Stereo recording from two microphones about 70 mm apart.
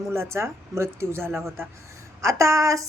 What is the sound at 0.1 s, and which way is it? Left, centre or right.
Speech, right.